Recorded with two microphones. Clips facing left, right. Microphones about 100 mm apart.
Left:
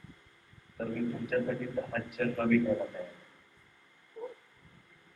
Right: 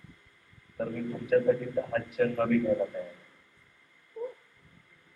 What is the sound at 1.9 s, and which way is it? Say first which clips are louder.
Speech: right 6 dB; 35° right (ahead or behind).